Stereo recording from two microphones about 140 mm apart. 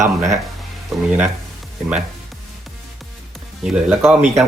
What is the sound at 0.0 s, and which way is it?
Speech, 60° right (ahead or behind).